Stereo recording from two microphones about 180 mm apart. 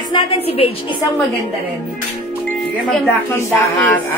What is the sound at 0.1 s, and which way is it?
A woman's voice, 30° left (ahead or behind).